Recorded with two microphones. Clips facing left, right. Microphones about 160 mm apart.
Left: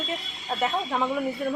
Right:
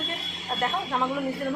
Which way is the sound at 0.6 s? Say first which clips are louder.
Left 1 dB; centre (ahead or behind).